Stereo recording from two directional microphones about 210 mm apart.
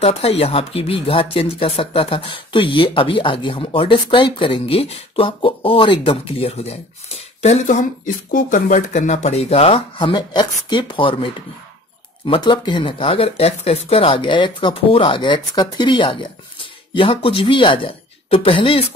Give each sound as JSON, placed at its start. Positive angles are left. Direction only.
{"t": 0.0, "sound": "speech", "side_deg": 30}